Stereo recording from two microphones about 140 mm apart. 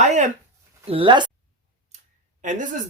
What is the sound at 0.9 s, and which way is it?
Speech, 40° right (ahead or behind).